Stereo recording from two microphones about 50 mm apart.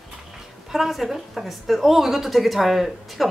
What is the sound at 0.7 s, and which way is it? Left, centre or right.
Speech, centre.